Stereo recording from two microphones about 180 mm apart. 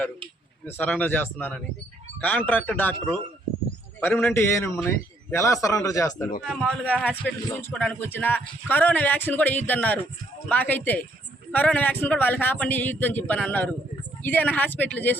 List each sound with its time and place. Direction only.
0.6 s a man's voice: 10° left (ahead or behind)
6.4 s a man's voice: 5° left (ahead or behind)